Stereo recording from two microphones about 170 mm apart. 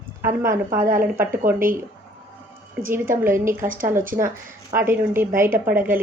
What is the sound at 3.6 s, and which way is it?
Speech, 55° right (ahead or behind).